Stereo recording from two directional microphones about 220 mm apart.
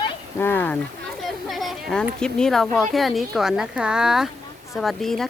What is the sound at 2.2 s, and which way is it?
Speech, centre (ahead or behind).